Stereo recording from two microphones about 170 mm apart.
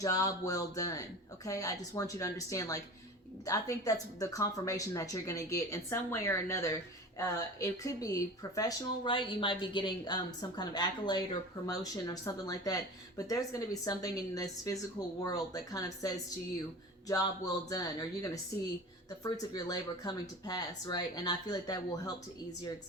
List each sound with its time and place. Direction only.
0.0 s speech: 20° left (ahead or behind)